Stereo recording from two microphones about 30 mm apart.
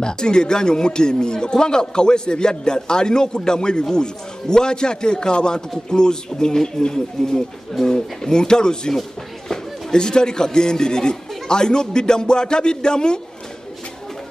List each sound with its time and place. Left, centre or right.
0.0 s a man's voice: left